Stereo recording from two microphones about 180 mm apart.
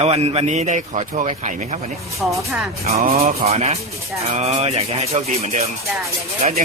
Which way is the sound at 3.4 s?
35° right (ahead or behind).